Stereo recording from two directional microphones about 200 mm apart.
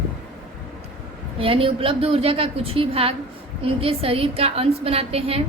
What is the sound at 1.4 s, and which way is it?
A woman's voice, 25° right (ahead or behind).